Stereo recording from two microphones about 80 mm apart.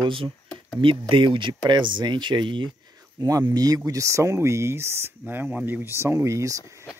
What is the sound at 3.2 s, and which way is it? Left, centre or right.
Speech, right.